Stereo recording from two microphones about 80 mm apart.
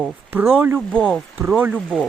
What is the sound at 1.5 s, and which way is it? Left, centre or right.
Speech, right.